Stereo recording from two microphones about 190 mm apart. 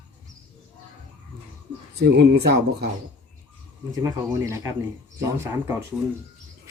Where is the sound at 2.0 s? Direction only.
60° right (ahead or behind).